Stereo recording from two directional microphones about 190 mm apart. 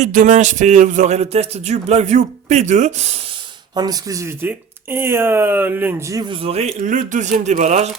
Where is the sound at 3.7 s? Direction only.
20° right (ahead or behind).